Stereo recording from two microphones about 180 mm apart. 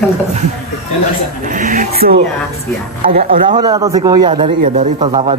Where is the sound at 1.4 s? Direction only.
45° right (ahead or behind).